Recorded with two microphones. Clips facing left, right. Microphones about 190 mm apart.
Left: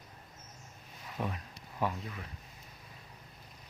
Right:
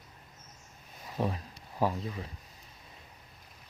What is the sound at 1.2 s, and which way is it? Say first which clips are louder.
Speech: right 5 dB; 35° right (ahead or behind).